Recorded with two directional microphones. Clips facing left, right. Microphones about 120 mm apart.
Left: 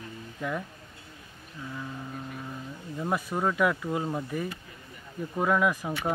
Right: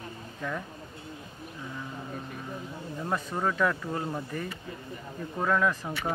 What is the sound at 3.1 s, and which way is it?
Speech, 10° left (ahead or behind).